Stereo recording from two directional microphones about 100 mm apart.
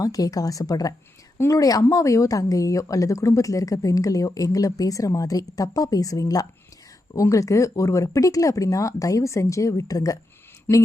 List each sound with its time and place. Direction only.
0.0 s speech: 35° left (ahead or behind)